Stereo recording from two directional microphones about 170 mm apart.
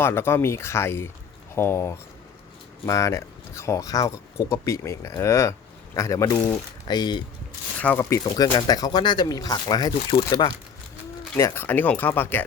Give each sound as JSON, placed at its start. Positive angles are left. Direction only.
{"t": 0.0, "sound": "speech", "side_deg": 15}
{"t": 7.8, "sound": "speech", "side_deg": 10}